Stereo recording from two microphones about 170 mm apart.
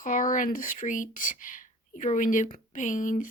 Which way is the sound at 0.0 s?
50° left (ahead or behind).